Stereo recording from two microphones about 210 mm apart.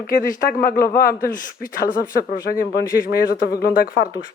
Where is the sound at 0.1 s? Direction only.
40° left (ahead or behind).